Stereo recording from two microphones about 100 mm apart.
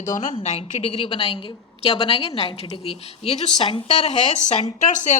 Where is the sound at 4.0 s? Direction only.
90° left.